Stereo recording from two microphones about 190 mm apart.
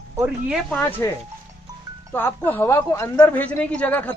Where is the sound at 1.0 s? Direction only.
15° left (ahead or behind).